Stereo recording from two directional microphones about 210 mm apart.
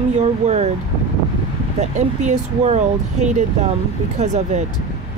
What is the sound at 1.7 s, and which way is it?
Speech, 35° right (ahead or behind).